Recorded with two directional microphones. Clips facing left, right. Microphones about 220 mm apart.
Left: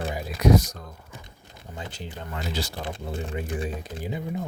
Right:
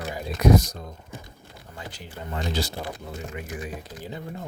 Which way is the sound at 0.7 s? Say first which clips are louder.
Right 3 dB; 25° right (ahead or behind).